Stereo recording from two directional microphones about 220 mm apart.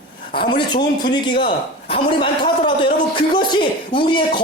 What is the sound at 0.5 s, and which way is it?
A man's voice, 20° left (ahead or behind).